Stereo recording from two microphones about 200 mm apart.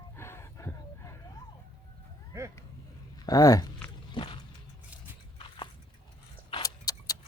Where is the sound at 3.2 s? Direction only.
20° left (ahead or behind).